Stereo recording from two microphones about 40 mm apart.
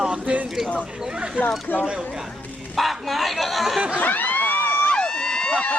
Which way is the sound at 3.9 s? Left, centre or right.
Left.